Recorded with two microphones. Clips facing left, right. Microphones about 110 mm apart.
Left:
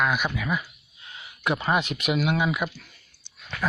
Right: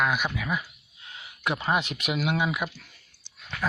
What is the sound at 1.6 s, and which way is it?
Speech, 5° right (ahead or behind).